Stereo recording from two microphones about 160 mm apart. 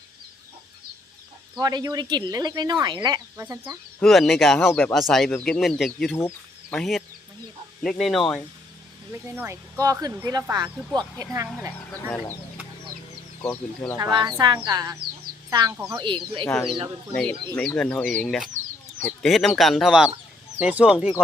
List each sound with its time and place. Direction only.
1.5 s speech: 25° right (ahead or behind)
4.0 s speech: centre (ahead or behind)
6.1 s a sound: 15° left (ahead or behind)
6.7 s speech: centre (ahead or behind)
9.3 s speech: 15° right (ahead or behind)
13.4 s speech: 10° left (ahead or behind)
13.9 s a child's voice: 25° right (ahead or behind)
16.5 s speech: 5° left (ahead or behind)